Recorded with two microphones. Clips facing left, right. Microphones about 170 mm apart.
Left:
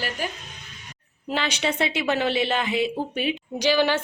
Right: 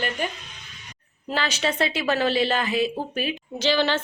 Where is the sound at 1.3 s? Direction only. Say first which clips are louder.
Even; 20° left (ahead or behind).